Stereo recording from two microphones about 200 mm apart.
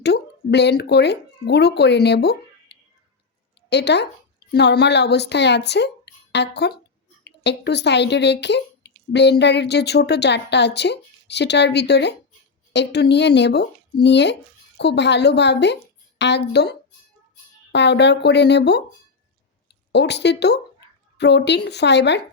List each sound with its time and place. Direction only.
0.0 s a woman's voice: 55° left (ahead or behind)
19.9 s a woman's voice: 60° left (ahead or behind)